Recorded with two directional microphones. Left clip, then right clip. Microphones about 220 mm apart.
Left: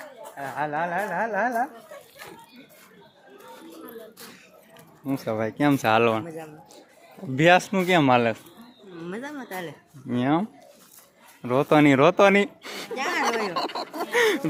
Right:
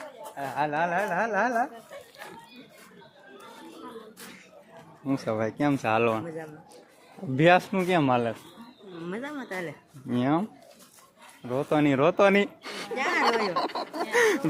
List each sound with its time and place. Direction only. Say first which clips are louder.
0.3 s speech: even; centre (ahead or behind)
5.0 s speech: left 1 dB; centre (ahead or behind); by 8.4 s 20° left (ahead or behind)
9.0 s speech: even; centre (ahead or behind)
11.4 s speech: left 6 dB; 25° left (ahead or behind); by 14.4 s 5° left (ahead or behind)